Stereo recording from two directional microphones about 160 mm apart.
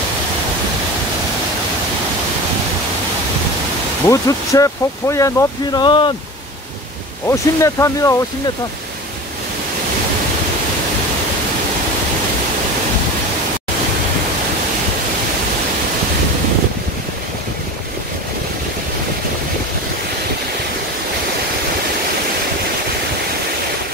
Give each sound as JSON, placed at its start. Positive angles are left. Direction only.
{"t": 4.1, "sound": "speech", "side_deg": 20}
{"t": 7.2, "sound": "speech", "side_deg": 20}